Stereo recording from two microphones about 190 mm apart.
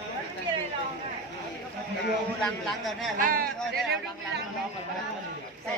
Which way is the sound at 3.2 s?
50° right (ahead or behind).